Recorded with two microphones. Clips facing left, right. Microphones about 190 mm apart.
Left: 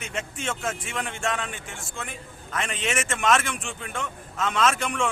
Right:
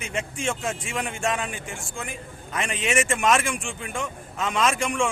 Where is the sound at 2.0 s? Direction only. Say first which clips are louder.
Right 2 dB; 10° right (ahead or behind).